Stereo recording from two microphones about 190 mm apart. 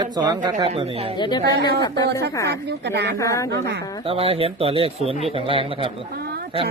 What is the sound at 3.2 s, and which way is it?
Speech, 15° left (ahead or behind).